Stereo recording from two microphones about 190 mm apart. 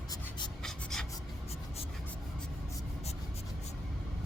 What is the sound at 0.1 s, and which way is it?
Writing, 25° left (ahead or behind).